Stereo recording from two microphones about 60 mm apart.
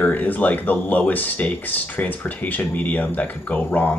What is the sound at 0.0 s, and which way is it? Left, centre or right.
Speech, left.